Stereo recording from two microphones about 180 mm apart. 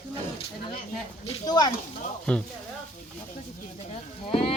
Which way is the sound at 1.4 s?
20° left (ahead or behind).